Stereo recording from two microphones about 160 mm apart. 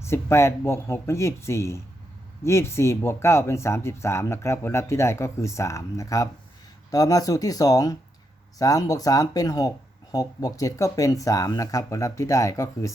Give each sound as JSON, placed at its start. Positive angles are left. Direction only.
{"t": 0.0, "sound": "speech", "side_deg": 15}